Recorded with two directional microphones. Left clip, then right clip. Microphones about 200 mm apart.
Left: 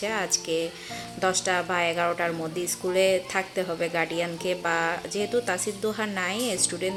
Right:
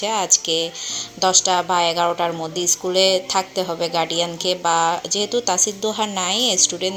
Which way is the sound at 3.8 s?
10° right (ahead or behind).